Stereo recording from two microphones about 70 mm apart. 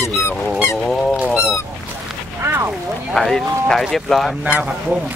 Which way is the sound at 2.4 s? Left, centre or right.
Right.